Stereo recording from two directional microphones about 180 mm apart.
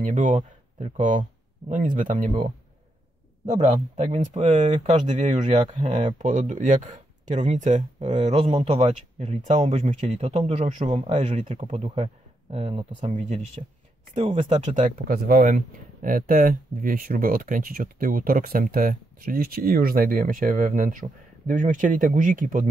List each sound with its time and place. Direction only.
0.0 s speech: 45° right (ahead or behind)
3.6 s speech: 40° right (ahead or behind)
5.8 s speech: 25° right (ahead or behind)
6.1 s speech: 45° right (ahead or behind)
13.0 s speech: 45° right (ahead or behind)
15.0 s speech: 55° right (ahead or behind)